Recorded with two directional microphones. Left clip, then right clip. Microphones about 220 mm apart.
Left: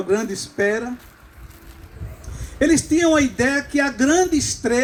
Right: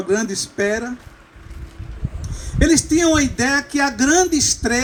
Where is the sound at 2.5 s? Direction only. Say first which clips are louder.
Right 1 dB; 40° right (ahead or behind).